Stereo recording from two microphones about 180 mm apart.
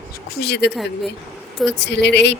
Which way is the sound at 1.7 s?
70° left (ahead or behind).